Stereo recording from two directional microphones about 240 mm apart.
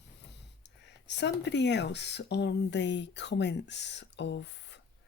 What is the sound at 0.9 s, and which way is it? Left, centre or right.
Speech, left.